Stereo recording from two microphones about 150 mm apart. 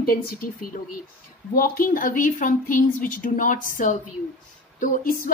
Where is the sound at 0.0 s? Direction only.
75° left (ahead or behind).